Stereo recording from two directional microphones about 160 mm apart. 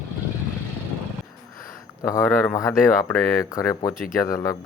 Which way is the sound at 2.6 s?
20° left (ahead or behind).